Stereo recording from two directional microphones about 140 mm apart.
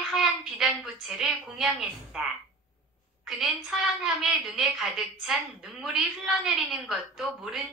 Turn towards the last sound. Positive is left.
turn(degrees=-5)  # may be behind; listen again after turning